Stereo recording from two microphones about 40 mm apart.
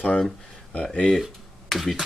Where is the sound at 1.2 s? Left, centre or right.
Centre.